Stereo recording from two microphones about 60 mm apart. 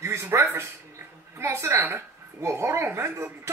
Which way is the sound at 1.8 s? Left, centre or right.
Right.